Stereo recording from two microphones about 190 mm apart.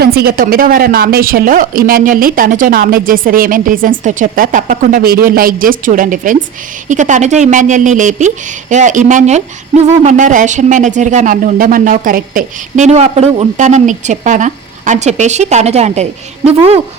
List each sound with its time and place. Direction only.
0.0 s a woman's voice: 55° right (ahead or behind); by 16.8 s 30° right (ahead or behind)